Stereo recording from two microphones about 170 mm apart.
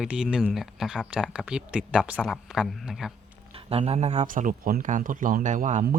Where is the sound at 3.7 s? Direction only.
35° right (ahead or behind).